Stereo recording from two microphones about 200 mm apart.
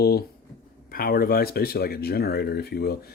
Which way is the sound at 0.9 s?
45° left (ahead or behind).